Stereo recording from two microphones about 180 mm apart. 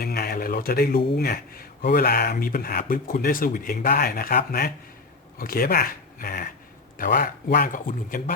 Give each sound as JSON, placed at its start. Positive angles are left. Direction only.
{"t": 0.0, "sound": "speech", "side_deg": 60}